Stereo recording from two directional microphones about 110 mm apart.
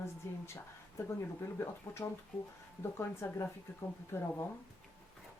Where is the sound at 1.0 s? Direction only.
20° left (ahead or behind).